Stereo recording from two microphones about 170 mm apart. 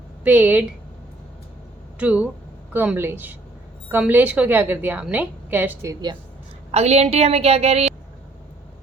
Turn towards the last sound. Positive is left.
turn(degrees=-40)  # may be behind; listen again after turning